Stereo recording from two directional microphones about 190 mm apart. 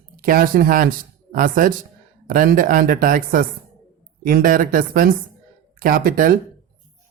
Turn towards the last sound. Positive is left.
turn(degrees=-45)  # may be behind; listen again after turning